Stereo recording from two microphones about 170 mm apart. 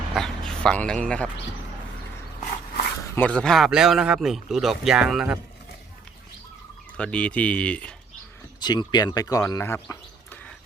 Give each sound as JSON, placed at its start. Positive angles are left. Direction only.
{"t": 0.1, "sound": "dog", "side_deg": 0}
{"t": 3.2, "sound": "speech", "side_deg": 5}
{"t": 6.9, "sound": "speech", "side_deg": 5}
{"t": 8.6, "sound": "speech", "side_deg": 25}